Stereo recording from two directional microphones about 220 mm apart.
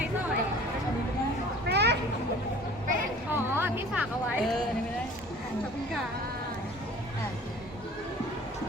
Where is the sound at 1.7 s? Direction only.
50° right (ahead or behind).